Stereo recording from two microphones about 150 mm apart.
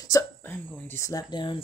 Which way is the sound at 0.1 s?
15° left (ahead or behind).